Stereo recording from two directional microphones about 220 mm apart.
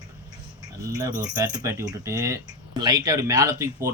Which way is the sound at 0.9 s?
15° right (ahead or behind).